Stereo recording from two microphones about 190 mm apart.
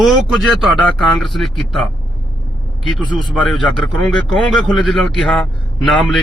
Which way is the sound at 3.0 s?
25° left (ahead or behind).